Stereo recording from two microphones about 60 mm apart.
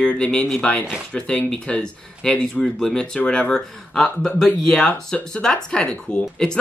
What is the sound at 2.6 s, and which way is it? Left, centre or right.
Speech, centre.